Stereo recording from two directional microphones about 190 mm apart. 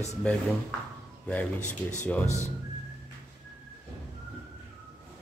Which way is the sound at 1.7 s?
10° left (ahead or behind).